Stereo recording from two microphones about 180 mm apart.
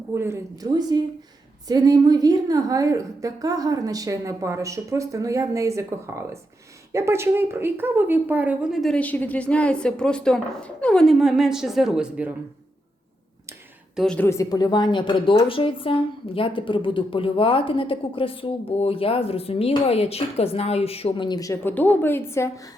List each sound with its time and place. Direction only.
0.1 s a woman's voice: 15° right (ahead or behind)
13.9 s a woman's voice: 5° left (ahead or behind)
14.3 s a woman's voice: 20° left (ahead or behind)